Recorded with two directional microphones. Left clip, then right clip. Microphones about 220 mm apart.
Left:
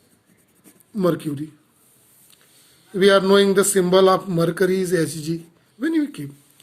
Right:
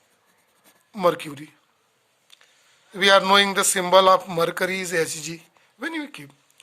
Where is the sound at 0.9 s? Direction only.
40° right (ahead or behind).